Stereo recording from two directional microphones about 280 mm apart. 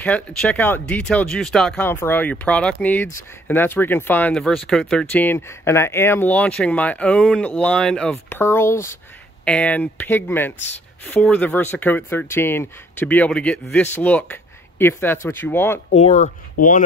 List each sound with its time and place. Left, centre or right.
0.0 s speech: centre
15.9 s speech: left